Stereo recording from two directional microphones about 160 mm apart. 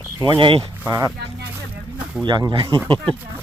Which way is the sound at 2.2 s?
25° right (ahead or behind).